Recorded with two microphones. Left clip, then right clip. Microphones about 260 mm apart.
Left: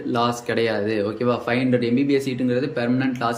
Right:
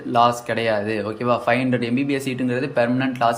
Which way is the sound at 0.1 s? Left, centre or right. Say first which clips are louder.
Right 5 dB; centre.